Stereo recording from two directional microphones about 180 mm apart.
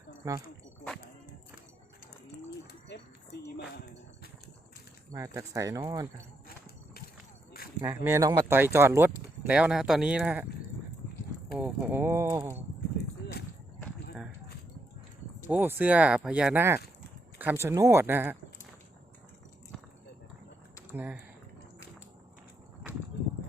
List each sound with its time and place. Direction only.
0.2 s speech: 15° right (ahead or behind)
2.9 s a woman's voice: 70° left (ahead or behind)
5.1 s speech: 15° right (ahead or behind)
7.8 s speech: 15° right (ahead or behind)
11.5 s speech: 10° right (ahead or behind)
15.4 s speech: 10° right (ahead or behind)
20.9 s speech: 10° right (ahead or behind)